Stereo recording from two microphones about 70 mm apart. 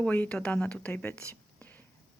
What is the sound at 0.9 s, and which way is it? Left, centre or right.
Speech, left.